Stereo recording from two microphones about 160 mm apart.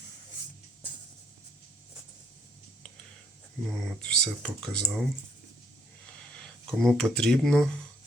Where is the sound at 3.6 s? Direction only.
Centre (ahead or behind).